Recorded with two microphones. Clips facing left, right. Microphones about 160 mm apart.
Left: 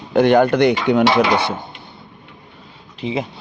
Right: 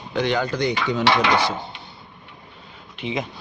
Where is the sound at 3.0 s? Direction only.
30° left (ahead or behind).